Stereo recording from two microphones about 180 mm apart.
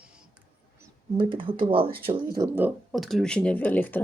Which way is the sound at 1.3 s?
30° right (ahead or behind).